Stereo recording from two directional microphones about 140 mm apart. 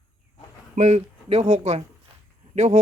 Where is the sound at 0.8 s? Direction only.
55° right (ahead or behind).